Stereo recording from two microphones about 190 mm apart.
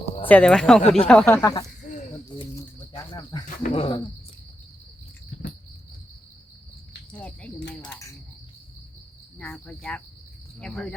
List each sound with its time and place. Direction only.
0.3 s cricket: 5° left (ahead or behind)
0.8 s speech: 35° left (ahead or behind)
1.0 s speech: 5° left (ahead or behind)
2.3 s pigeon: 25° left (ahead or behind)
3.1 s cricket: 20° left (ahead or behind)
7.1 s cricket: 5° left (ahead or behind)
9.4 s cricket: 5° left (ahead or behind)